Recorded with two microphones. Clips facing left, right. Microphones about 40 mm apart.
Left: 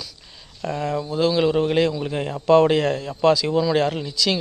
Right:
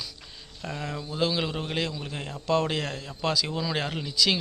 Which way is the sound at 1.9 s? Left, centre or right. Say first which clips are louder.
Left 10 dB; left.